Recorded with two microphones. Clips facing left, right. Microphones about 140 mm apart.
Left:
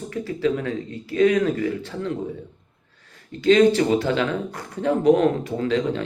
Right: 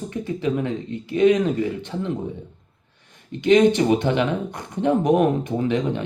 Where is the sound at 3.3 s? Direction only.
20° right (ahead or behind).